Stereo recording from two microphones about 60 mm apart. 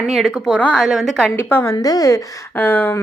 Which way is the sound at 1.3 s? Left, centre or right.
Left.